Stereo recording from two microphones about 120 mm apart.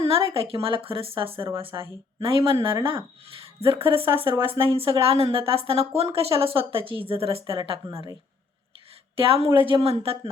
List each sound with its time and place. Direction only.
0.0 s a woman's voice: 50° right (ahead or behind)
9.1 s a woman's voice: 50° right (ahead or behind)